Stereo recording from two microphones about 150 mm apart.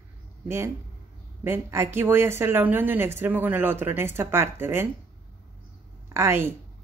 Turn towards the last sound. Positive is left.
turn(degrees=-15)  # may be behind; listen again after turning